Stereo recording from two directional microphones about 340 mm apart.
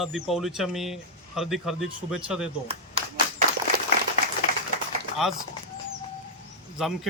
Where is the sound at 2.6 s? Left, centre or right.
Centre.